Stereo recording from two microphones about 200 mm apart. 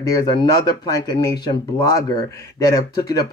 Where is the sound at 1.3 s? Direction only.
20° left (ahead or behind).